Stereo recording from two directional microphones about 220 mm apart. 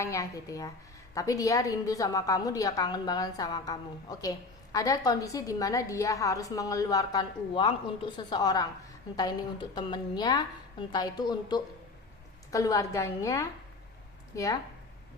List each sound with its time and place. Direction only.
0.0 s a woman's voice: 15° left (ahead or behind)
9.7 s a woman's voice: 20° left (ahead or behind)